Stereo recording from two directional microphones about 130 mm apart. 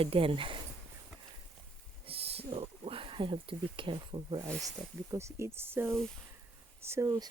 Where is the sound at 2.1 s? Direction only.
50° right (ahead or behind).